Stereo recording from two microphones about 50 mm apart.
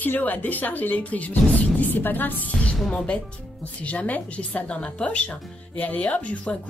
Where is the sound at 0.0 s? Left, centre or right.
Left.